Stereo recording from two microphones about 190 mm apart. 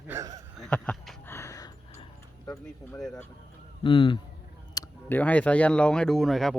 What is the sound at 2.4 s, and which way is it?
Music, 20° left (ahead or behind).